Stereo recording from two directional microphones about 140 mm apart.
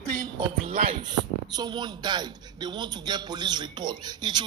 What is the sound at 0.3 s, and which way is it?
Speech, 40° right (ahead or behind).